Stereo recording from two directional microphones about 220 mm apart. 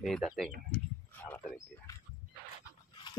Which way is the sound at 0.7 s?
10° left (ahead or behind).